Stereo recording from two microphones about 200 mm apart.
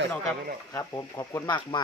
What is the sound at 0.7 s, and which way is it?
Speech, 15° left (ahead or behind).